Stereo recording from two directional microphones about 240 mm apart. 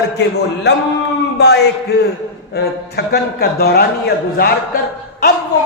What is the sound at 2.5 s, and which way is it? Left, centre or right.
A man's voice, left.